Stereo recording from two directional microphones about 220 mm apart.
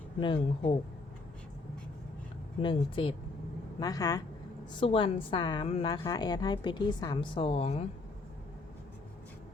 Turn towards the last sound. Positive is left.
turn(degrees=25)  # may be behind; listen again after turning